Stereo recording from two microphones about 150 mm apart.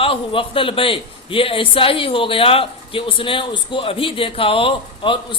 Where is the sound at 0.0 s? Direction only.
35° left (ahead or behind).